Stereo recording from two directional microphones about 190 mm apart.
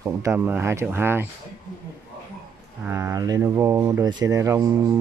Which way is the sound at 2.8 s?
15° right (ahead or behind).